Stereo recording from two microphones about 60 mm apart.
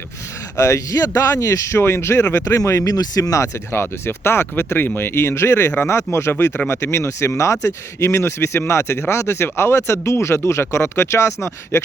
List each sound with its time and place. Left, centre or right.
0.5 s speech: left
1.8 s speech: left
2.8 s speech: left
3.7 s speech: left